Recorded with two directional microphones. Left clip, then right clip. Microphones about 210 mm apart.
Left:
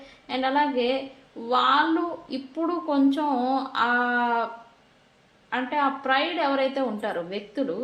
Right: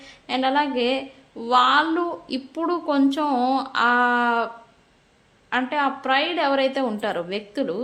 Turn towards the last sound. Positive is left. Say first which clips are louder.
# right 3 dB
turn(degrees=-35)  # may be behind; listen again after turning